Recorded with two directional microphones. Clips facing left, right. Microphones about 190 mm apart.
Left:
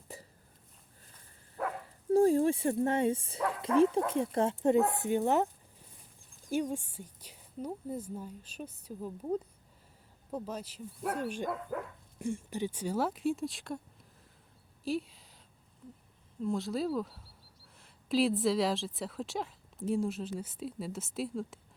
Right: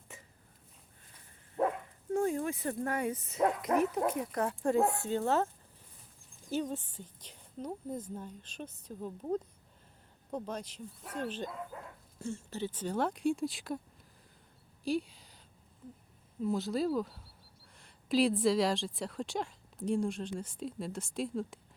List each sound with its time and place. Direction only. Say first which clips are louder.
0.1 s hiccup: left 6 dB; 35° left (ahead or behind)
1.6 s dog: right 5 dB; 25° right (ahead or behind)
2.1 s speech: left 7 dB; 35° left (ahead or behind); by 5.5 s 15° left (ahead or behind)
6.5 s a woman's voice: left 2 dB; 10° left (ahead or behind)
11.7 s speech: left 10 dB; 70° left (ahead or behind)
12.2 s a woman's voice: left 3 dB; 15° left (ahead or behind)
16.4 s a woman's voice: right 1 dB; centre (ahead or behind)